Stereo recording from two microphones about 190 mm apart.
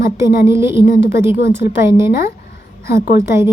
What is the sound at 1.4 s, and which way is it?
Speech, 60° left (ahead or behind).